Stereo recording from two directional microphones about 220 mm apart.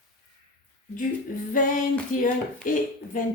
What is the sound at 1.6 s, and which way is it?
Speech, 35° left (ahead or behind).